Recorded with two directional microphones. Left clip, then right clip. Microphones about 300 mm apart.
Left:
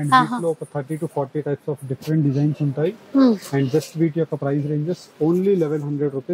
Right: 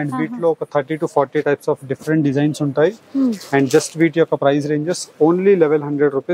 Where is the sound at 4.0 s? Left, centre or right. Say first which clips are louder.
Right 7 dB; centre.